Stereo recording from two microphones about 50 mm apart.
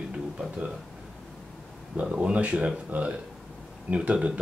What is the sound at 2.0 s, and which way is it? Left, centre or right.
Speech, right.